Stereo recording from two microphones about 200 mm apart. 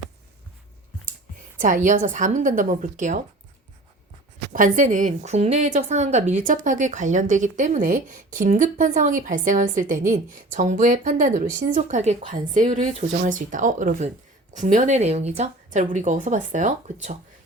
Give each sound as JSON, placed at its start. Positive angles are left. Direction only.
{"t": 1.5, "sound": "a woman's voice", "side_deg": -40}
{"t": 4.5, "sound": "a woman's voice", "side_deg": -40}